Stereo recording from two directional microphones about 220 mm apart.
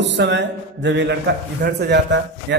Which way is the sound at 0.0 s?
55° right (ahead or behind).